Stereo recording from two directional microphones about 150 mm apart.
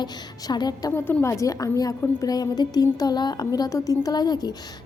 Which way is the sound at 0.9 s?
15° left (ahead or behind).